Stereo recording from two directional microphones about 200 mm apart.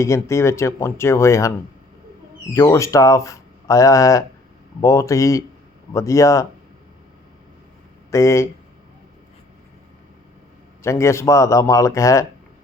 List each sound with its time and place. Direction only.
0.0 s speech: 15° left (ahead or behind)
8.1 s speech: 15° left (ahead or behind)
10.8 s speech: 15° left (ahead or behind)